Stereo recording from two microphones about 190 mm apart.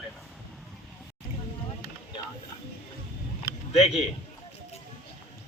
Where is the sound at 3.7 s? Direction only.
30° left (ahead or behind).